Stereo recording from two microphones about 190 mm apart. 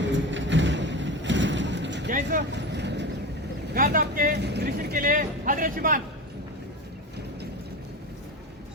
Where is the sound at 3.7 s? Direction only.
50° right (ahead or behind).